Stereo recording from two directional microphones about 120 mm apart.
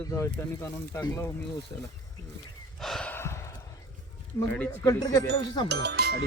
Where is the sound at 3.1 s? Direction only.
20° left (ahead or behind).